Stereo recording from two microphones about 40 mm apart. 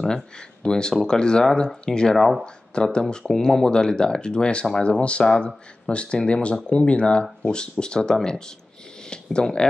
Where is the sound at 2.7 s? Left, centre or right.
Left.